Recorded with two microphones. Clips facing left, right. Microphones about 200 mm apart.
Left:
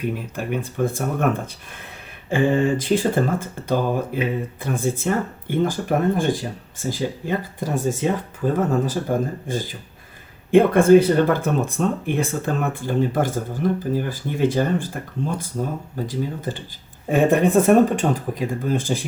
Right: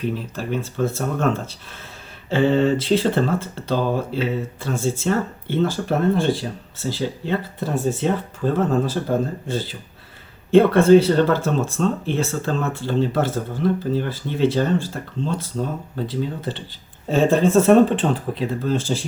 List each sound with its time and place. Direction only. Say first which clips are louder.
0.0 s speech: even; 15° left (ahead or behind)
4.7 s speech: even; 55° left (ahead or behind)
5.0 s speech: right 1 dB; 15° left (ahead or behind)
6.1 s speech: right 1 dB; 50° left (ahead or behind)
7.3 s speech: right 1 dB; 10° left (ahead or behind)
10.8 s speech: even; 50° left (ahead or behind)
11.1 s speech: even; 15° left (ahead or behind)
16.4 s speech: even; 45° left (ahead or behind)
17.1 s speech: even; 15° left (ahead or behind)